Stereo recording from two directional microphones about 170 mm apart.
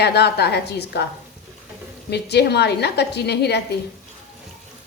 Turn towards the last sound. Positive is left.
turn(degrees=75)  # may be behind; listen again after turning